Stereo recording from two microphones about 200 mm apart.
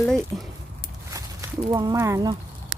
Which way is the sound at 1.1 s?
15° right (ahead or behind).